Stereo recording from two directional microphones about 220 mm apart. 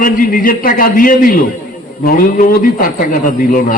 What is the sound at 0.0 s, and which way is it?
A man's voice, 40° left (ahead or behind).